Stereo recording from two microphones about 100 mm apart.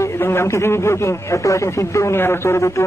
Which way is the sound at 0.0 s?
25° left (ahead or behind).